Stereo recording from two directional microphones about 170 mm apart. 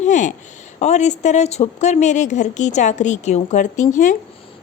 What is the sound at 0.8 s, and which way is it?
A woman's voice, 45° left (ahead or behind).